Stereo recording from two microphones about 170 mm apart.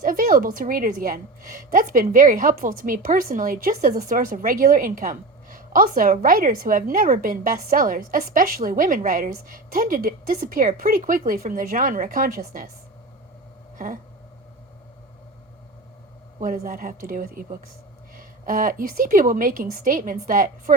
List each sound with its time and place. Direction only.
0.0 s a woman's voice: 55° right (ahead or behind)
13.7 s a sound: 50° right (ahead or behind)
16.4 s a woman's voice: 55° right (ahead or behind)